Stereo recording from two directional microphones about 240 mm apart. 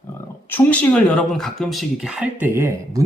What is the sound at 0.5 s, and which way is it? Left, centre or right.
Speech, centre.